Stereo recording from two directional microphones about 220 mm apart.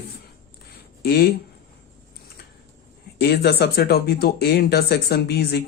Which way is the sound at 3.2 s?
45° left (ahead or behind).